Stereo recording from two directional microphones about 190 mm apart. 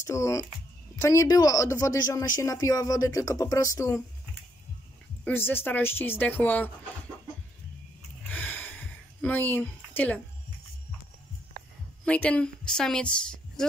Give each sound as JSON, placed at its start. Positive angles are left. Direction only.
{"t": 0.0, "sound": "speech", "side_deg": 15}
{"t": 5.2, "sound": "speech", "side_deg": 10}
{"t": 8.3, "sound": "a sound", "side_deg": 10}
{"t": 12.0, "sound": "a woman's voice", "side_deg": 5}